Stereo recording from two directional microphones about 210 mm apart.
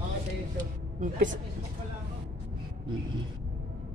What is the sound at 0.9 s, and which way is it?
Speech, 40° right (ahead or behind).